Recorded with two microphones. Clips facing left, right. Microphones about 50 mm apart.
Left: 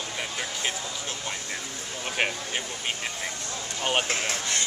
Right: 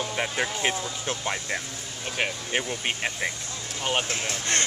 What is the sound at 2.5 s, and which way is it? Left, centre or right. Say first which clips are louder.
Speech: right 4 dB; right.